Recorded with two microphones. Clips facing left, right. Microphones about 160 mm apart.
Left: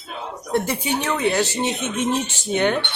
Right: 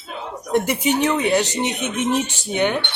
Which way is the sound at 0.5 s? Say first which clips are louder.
Right 3 dB; 15° right (ahead or behind).